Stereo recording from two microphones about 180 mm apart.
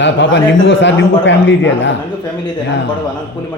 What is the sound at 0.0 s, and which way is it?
A man's voice, 90° left.